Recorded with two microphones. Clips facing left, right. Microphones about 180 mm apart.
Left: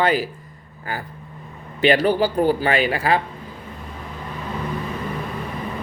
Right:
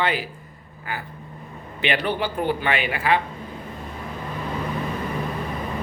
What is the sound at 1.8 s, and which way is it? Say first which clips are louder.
Speech: left 7 dB; 40° left (ahead or behind).